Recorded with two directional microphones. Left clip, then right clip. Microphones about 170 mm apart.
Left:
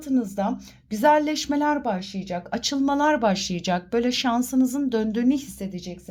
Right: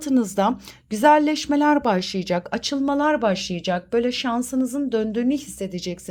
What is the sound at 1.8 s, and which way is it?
Speech, 35° right (ahead or behind).